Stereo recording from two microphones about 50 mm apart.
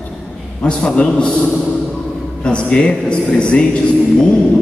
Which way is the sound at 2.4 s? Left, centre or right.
Centre.